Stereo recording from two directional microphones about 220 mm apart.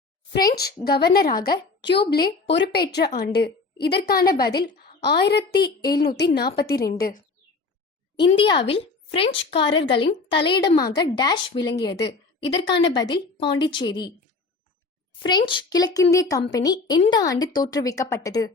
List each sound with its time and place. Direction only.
0.4 s a woman's voice: 45° left (ahead or behind)
8.2 s a woman's voice: 25° left (ahead or behind)
15.2 s a woman's voice: 20° left (ahead or behind)